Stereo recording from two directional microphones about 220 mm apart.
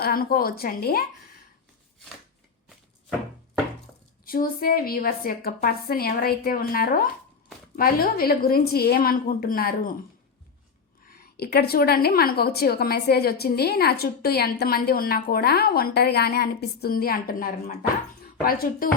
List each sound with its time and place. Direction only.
0.0 s a woman's voice: 40° left (ahead or behind)
4.3 s a woman's voice: 40° left (ahead or behind)
11.1 s a woman's voice: 45° left (ahead or behind)